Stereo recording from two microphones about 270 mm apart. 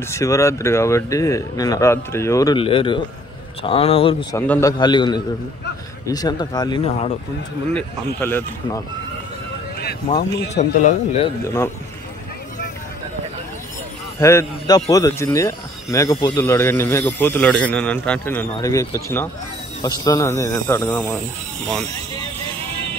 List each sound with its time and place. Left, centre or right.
0.1 s a man's voice: centre
10.5 s a man's voice: left
11.4 s a man's voice: centre
14.2 s a man's voice: centre